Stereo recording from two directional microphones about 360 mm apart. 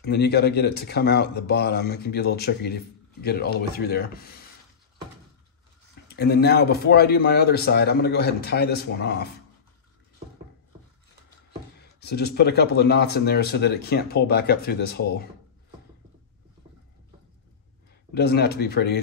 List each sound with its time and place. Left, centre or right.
0.0 s speech: left
6.0 s speech: left
12.0 s speech: left
18.1 s speech: left